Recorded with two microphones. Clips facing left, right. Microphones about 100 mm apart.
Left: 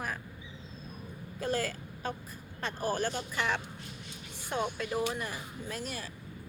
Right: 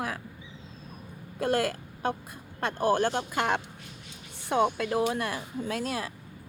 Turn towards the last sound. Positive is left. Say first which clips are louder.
# right 8 dB
turn(degrees=-90)